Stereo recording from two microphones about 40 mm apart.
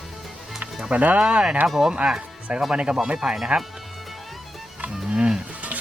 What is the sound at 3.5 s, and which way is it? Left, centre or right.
Speech, right.